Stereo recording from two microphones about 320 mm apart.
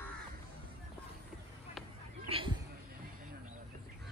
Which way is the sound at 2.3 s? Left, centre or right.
Centre.